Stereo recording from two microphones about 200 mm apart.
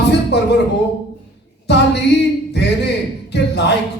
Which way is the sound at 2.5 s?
55° left (ahead or behind).